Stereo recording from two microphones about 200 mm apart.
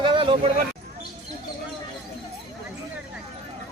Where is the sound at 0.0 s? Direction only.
25° right (ahead or behind).